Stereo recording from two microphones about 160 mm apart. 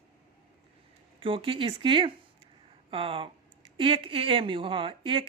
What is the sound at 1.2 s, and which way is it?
Speech, 35° right (ahead or behind).